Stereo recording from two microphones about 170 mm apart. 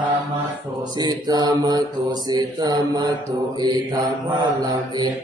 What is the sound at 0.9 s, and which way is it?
Mantra, 25° right (ahead or behind).